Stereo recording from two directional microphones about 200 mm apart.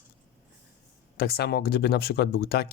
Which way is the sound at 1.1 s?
50° left (ahead or behind).